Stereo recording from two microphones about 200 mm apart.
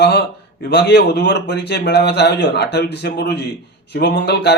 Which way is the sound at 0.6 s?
55° left (ahead or behind).